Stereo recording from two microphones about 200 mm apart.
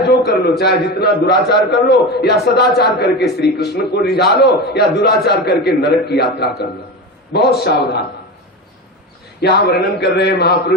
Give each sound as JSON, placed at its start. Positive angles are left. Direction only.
{"t": 0.2, "sound": "a man's voice", "side_deg": 55}
{"t": 9.4, "sound": "a man's voice", "side_deg": 55}